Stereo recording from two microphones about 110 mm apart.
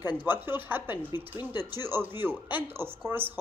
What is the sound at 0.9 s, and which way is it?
Speech, 45° left (ahead or behind).